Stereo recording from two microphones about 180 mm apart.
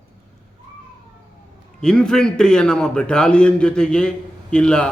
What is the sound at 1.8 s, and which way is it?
A man's voice, 5° left (ahead or behind).